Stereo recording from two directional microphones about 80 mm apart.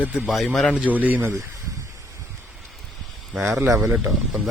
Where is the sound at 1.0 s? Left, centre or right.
Right.